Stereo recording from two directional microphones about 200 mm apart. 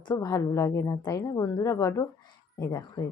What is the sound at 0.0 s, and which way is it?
Speech, 20° left (ahead or behind).